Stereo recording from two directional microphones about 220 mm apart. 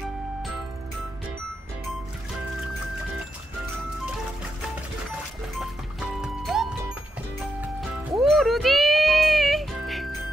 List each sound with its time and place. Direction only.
5.6 s music: centre (ahead or behind)
8.2 s music: centre (ahead or behind)